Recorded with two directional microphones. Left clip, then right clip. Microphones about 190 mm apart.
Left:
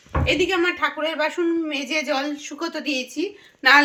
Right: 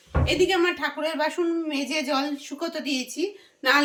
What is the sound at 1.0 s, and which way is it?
Speech, 35° left (ahead or behind).